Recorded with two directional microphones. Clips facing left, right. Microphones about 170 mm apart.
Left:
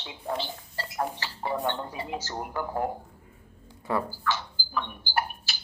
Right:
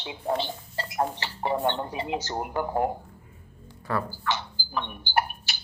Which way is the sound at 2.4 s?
20° right (ahead or behind).